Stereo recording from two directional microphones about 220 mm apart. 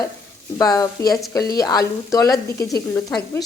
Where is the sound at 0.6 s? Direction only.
15° left (ahead or behind).